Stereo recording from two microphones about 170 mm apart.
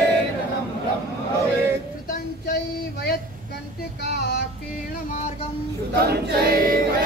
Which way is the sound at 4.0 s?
75° left (ahead or behind).